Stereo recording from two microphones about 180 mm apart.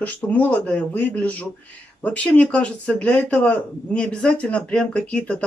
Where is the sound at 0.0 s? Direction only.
10° left (ahead or behind).